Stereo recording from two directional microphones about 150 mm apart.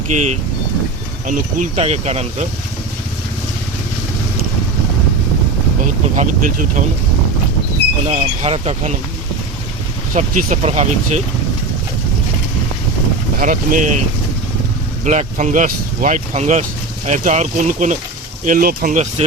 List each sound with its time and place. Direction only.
0.1 s speech: 50° right (ahead or behind)
6.1 s speech: 60° right (ahead or behind)
8.0 s speech: 45° right (ahead or behind)
10.2 s speech: 55° right (ahead or behind)
13.4 s speech: 65° right (ahead or behind)
15.0 s speech: 50° right (ahead or behind)
18.4 s speech: 65° right (ahead or behind)